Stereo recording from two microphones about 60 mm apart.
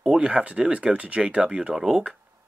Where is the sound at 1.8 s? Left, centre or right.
Centre.